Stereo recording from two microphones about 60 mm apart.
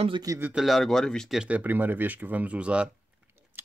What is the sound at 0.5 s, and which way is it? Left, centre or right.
Speech, centre.